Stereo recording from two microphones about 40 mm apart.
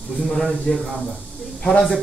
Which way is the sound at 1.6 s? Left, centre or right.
Centre.